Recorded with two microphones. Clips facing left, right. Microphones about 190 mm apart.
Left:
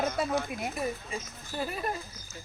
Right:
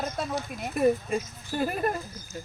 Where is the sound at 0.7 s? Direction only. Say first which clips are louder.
Right 10 dB; 60° right (ahead or behind).